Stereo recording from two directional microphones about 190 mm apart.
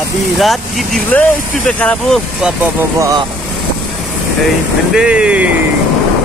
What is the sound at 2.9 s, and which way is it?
Speech, 15° right (ahead or behind).